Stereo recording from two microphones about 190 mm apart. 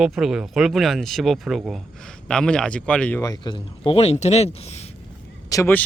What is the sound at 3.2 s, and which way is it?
Speech, 20° left (ahead or behind).